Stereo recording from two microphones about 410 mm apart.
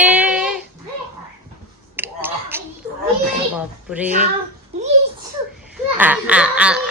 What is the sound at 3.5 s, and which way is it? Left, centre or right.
Speech, centre.